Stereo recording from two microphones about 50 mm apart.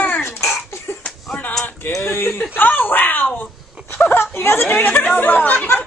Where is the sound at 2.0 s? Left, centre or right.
Left.